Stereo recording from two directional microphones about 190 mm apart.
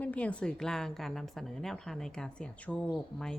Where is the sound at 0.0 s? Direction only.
5° left (ahead or behind).